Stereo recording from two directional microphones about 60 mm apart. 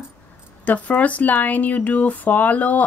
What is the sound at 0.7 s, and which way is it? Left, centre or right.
A woman's voice, left.